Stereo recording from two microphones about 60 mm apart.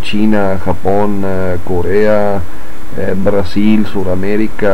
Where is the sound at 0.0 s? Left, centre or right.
Centre.